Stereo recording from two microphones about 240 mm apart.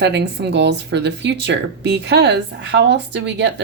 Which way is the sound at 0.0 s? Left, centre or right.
Right.